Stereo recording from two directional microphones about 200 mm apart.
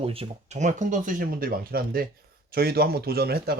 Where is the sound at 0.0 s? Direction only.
30° right (ahead or behind).